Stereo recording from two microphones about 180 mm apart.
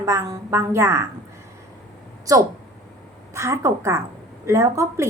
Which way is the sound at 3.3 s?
15° right (ahead or behind).